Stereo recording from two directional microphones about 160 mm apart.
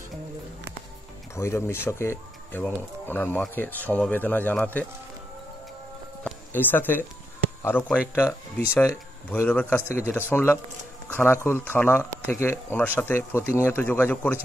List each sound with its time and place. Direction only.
1.3 s speech: 15° left (ahead or behind)
6.5 s speech: 10° left (ahead or behind)